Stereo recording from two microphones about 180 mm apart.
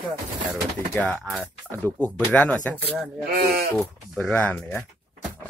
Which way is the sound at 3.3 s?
60° right (ahead or behind).